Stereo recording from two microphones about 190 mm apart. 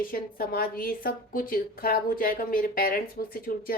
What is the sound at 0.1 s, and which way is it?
Speech, 50° left (ahead or behind).